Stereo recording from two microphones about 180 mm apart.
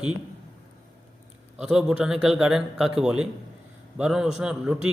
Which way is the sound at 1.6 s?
Centre (ahead or behind).